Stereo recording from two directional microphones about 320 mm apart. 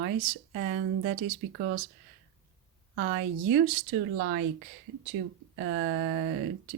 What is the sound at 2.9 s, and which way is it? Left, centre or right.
Speech, right.